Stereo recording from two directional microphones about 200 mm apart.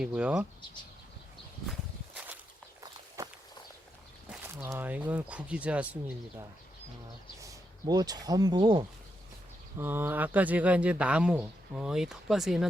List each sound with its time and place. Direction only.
0.0 s speech: 5° right (ahead or behind)
2.1 s walk: 5° right (ahead or behind)
4.3 s a sound: 5° right (ahead or behind)
4.7 s speech: 10° right (ahead or behind)
7.4 s speech: 20° right (ahead or behind)
9.7 s speech: 10° right (ahead or behind)